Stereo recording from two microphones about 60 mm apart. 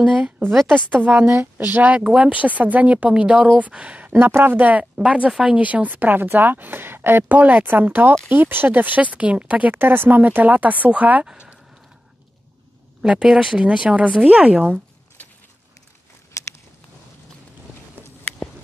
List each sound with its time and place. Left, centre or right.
0.7 s speech: right
4.1 s a woman's voice: right
11.2 s speech: centre
13.0 s speech: centre
13.3 s speech: centre
13.6 s speech: centre
16.4 s a sound: left